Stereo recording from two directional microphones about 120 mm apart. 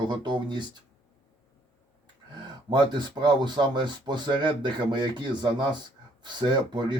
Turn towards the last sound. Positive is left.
turn(degrees=-40)  # may be behind; listen again after turning